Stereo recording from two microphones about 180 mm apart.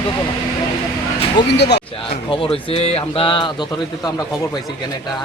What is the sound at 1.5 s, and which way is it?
Speech, 70° left (ahead or behind).